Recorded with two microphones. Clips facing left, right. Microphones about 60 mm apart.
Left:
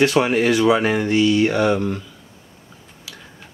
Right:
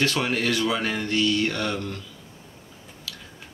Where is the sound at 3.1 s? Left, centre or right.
Centre.